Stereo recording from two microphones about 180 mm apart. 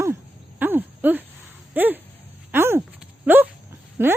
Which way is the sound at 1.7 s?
10° right (ahead or behind).